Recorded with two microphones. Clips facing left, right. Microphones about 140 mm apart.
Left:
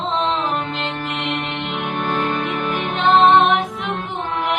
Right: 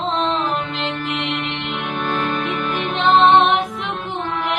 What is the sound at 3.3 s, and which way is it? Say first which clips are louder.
Music: even; 10° left (ahead or behind).